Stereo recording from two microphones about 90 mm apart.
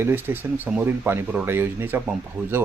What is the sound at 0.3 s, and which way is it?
Speech, 25° right (ahead or behind).